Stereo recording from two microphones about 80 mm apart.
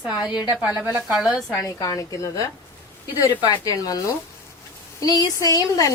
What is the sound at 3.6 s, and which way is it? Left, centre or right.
Speech, left.